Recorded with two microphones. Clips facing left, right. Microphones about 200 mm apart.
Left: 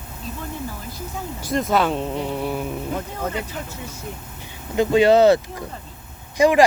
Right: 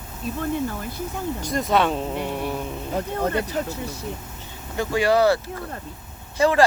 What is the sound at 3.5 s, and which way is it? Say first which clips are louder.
Speech: right 6 dB; 35° right (ahead or behind).